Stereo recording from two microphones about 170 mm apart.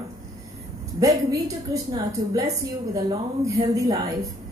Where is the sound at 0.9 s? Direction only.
20° right (ahead or behind).